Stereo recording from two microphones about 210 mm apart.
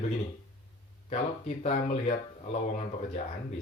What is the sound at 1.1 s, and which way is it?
Speech, 35° left (ahead or behind).